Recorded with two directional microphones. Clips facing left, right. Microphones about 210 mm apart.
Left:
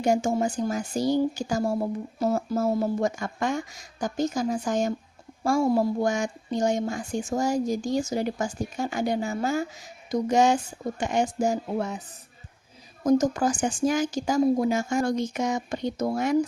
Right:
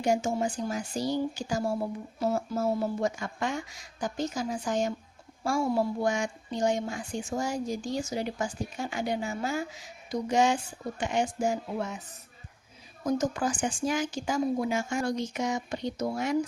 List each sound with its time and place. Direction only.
0.0 s speech: 45° left (ahead or behind)
13.1 s speech: 45° left (ahead or behind)